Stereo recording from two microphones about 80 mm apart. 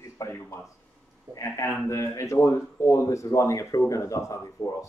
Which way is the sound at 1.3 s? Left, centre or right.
Left.